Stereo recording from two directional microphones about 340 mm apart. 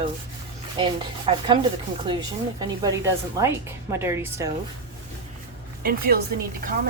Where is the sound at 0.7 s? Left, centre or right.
Centre.